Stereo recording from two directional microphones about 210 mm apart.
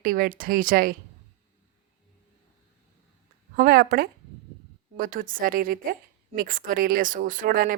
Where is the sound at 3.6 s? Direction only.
45° right (ahead or behind).